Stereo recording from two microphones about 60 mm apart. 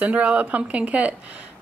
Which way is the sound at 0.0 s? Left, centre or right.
Right.